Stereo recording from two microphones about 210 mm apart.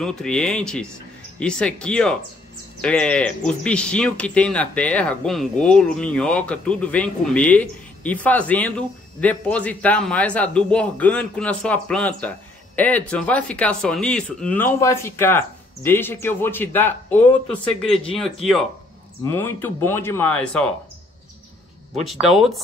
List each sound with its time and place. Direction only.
0.0 s speech: 5° left (ahead or behind)
22.1 s speech: centre (ahead or behind)